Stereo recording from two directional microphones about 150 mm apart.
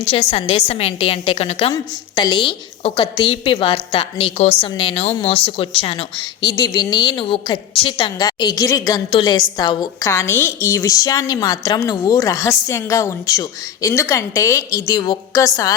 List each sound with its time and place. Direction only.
0.0 s a woman's voice: 40° left (ahead or behind)
1.7 s a woman's voice: 30° left (ahead or behind)
6.5 s a woman's voice: 20° left (ahead or behind)